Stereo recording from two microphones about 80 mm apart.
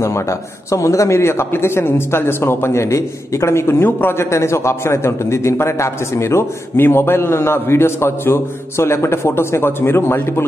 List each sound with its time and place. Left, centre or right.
0.7 s a man's voice: left